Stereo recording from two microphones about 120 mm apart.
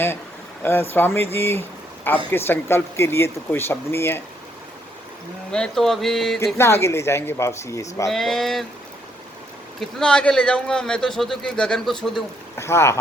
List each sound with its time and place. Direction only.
0.6 s speech: 20° left (ahead or behind)
5.5 s speech: 5° left (ahead or behind)
6.6 s speech: 20° left (ahead or behind)
8.1 s speech: centre (ahead or behind)
10.0 s a man's voice: 5° left (ahead or behind)
12.5 s speech: 20° left (ahead or behind)